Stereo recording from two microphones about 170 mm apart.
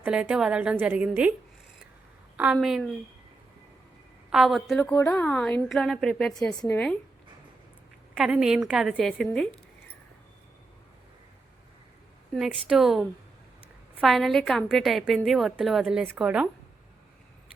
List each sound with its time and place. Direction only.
0.0 s a woman's voice: 5° right (ahead or behind)
2.3 s a woman's voice: 5° right (ahead or behind)
4.3 s a woman's voice: centre (ahead or behind)
6.5 s a woman's voice: 25° left (ahead or behind)
8.1 s a woman's voice: 5° right (ahead or behind)
12.3 s a woman's voice: centre (ahead or behind)